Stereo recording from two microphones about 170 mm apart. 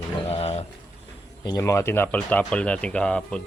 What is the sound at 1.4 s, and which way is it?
Speech, 20° left (ahead or behind).